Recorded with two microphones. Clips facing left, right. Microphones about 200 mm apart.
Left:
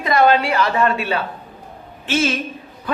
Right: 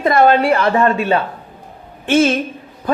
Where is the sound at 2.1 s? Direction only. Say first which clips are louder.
Right 7 dB; 55° right (ahead or behind).